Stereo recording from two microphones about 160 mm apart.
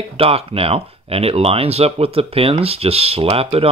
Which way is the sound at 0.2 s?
35° right (ahead or behind).